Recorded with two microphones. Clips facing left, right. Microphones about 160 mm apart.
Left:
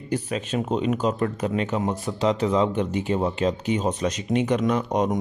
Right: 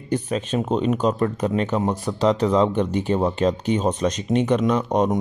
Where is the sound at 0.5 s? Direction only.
30° right (ahead or behind).